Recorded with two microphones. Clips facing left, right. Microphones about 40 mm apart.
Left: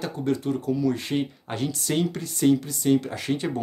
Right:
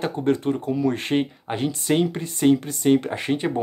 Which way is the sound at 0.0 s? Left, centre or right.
Right.